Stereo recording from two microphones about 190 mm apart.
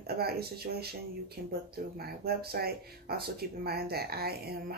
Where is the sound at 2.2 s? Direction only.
55° right (ahead or behind).